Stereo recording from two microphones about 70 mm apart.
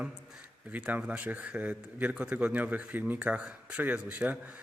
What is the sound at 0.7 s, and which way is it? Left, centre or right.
A man's voice, right.